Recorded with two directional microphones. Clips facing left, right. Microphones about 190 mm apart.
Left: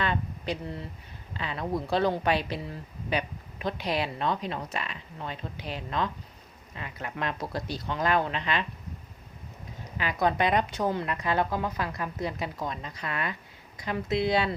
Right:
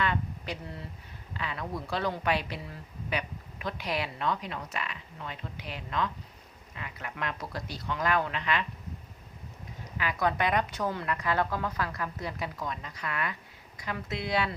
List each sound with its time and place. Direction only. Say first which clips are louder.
0.0 s a sound: left 1 dB; 25° left (ahead or behind)
1.3 s a woman's voice: left 5 dB; 25° left (ahead or behind)
10.0 s a woman's voice: left 3 dB; 25° left (ahead or behind)